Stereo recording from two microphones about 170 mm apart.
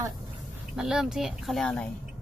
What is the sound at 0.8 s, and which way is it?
A woman's voice, centre (ahead or behind).